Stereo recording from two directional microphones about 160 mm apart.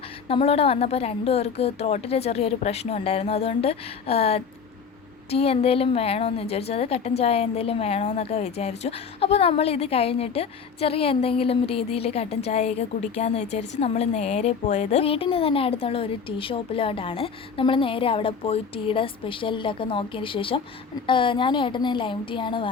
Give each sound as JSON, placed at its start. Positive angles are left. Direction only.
{"t": 0.3, "sound": "a woman's voice", "side_deg": 35}